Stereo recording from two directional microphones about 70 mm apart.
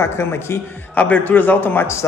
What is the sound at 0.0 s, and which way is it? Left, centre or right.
Speech, left.